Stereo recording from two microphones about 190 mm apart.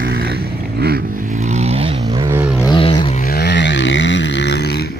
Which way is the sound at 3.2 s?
55° left (ahead or behind).